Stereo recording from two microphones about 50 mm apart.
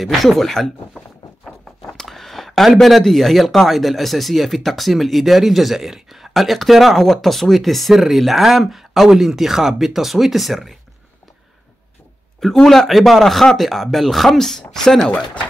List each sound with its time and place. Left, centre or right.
0.0 s speech: centre
12.6 s speech: centre
15.0 s speech: left